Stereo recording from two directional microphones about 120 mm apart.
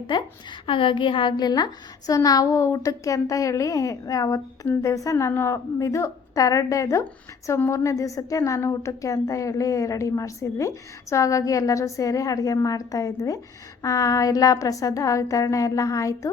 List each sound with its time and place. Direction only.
0.7 s a woman's voice: 45° left (ahead or behind); by 16.3 s 25° left (ahead or behind)